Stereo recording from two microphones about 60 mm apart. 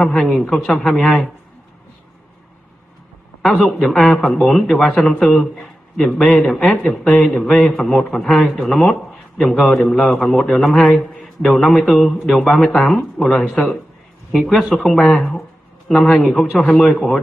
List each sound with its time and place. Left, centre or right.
0.0 s a man's voice: centre
3.4 s a man's voice: centre
10.8 s speech: centre
11.1 s a man's voice: centre